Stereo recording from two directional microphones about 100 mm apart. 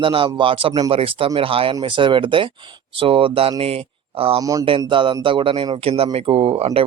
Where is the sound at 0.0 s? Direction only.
60° right (ahead or behind).